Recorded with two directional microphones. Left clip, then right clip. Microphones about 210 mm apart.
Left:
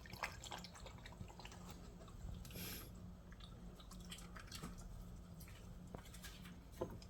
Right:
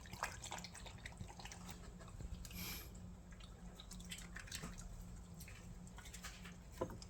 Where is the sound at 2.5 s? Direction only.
5° right (ahead or behind).